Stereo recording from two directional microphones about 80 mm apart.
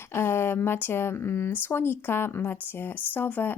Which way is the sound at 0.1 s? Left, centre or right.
Left.